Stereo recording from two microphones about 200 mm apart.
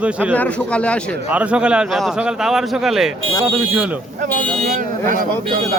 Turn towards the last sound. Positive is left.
turn(degrees=-40)  # may be behind; listen again after turning